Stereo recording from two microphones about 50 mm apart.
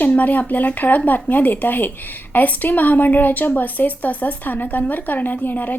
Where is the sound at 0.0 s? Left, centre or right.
Left.